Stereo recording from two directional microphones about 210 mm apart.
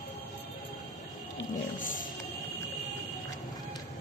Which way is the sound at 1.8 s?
40° left (ahead or behind).